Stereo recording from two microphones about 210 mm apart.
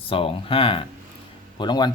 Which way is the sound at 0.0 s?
25° left (ahead or behind).